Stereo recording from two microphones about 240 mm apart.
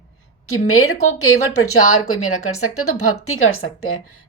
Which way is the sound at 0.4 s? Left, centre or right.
Left.